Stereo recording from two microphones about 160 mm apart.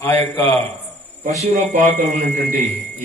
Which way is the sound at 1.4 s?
45° right (ahead or behind).